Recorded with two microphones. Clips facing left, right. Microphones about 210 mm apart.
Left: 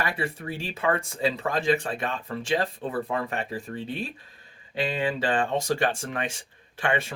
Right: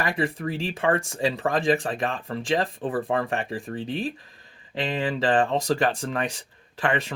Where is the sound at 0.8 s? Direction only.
30° right (ahead or behind).